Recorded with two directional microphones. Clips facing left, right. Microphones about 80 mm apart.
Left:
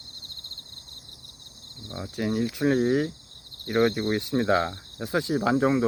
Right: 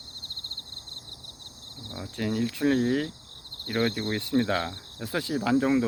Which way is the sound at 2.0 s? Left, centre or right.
Centre.